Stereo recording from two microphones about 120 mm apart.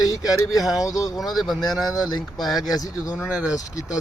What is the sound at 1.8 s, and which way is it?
Speech, 35° left (ahead or behind).